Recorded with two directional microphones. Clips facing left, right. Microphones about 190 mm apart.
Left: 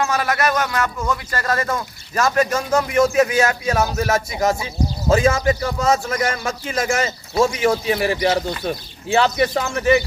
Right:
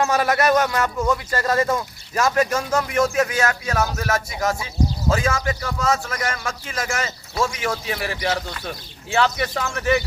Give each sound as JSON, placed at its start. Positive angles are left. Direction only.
{"t": 0.0, "sound": "speech", "side_deg": -35}
{"t": 2.1, "sound": "speech", "side_deg": -10}
{"t": 2.8, "sound": "speech", "side_deg": 5}